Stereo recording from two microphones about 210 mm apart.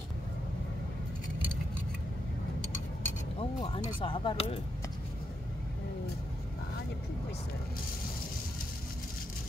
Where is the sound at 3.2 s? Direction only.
25° left (ahead or behind).